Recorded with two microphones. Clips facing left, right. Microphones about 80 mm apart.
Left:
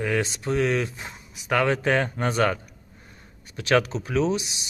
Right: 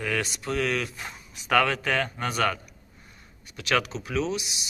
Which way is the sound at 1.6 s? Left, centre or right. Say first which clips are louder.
Left 4 dB; left.